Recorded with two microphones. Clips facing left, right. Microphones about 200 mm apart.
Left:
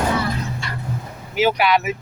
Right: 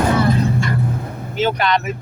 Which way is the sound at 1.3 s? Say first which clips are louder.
Left 1 dB; 10° left (ahead or behind).